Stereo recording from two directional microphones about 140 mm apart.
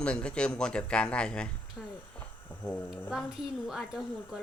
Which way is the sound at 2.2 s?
10° left (ahead or behind).